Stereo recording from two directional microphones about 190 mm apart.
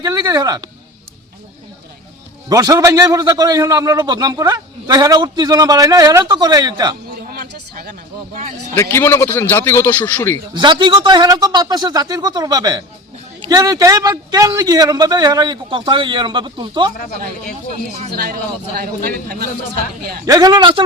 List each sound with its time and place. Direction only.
0.0 s a man's voice: 20° right (ahead or behind)
2.5 s a man's voice: 20° right (ahead or behind)
7.3 s a sound: 50° right (ahead or behind)
8.7 s a man's voice: 10° left (ahead or behind)
10.5 s a man's voice: 25° right (ahead or behind)
17.7 s speech: 35° right (ahead or behind)
18.1 s a man's voice: 55° right (ahead or behind)
20.2 s a man's voice: 20° right (ahead or behind)